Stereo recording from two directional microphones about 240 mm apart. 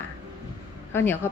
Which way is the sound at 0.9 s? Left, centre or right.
Centre.